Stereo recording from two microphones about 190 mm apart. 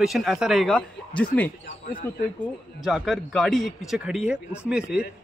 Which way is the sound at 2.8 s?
Centre (ahead or behind).